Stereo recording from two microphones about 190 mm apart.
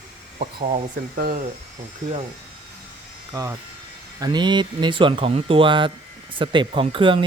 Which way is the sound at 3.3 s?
15° right (ahead or behind).